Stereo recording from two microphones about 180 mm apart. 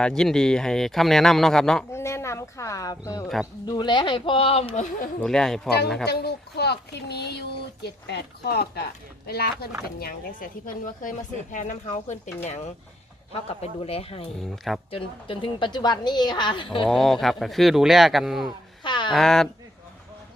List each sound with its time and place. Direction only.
0.0 s speech: 5° left (ahead or behind)
1.9 s a woman's voice: 15° left (ahead or behind); by 5.0 s 40° left (ahead or behind)
5.2 s speech: 5° left (ahead or behind)
6.1 s speech: 65° left (ahead or behind); by 14.3 s 35° left (ahead or behind)
14.5 s speech: centre (ahead or behind)
14.8 s a woman's voice: 30° left (ahead or behind)
16.8 s speech: centre (ahead or behind)
18.8 s a sound: 25° left (ahead or behind)
19.1 s speech: 5° left (ahead or behind)